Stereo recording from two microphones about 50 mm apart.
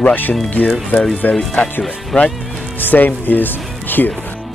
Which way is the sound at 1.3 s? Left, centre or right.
Centre.